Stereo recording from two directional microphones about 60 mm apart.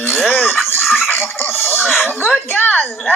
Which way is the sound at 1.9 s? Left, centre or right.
Left.